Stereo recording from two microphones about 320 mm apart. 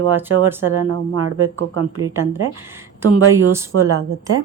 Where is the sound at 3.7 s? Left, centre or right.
Right.